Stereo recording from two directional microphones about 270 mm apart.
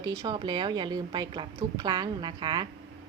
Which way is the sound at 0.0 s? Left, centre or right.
Centre.